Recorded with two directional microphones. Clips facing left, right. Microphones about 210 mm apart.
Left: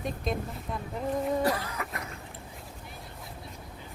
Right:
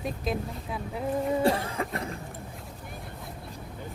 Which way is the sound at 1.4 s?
25° right (ahead or behind).